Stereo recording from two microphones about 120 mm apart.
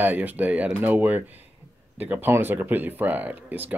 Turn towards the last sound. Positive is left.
turn(degrees=-15)  # may be behind; listen again after turning